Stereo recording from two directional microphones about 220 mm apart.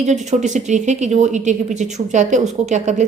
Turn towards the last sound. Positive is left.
turn(degrees=-35)  # may be behind; listen again after turning